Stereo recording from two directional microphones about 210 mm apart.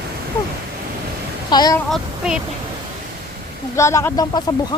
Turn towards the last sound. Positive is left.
turn(degrees=20)  # may be behind; listen again after turning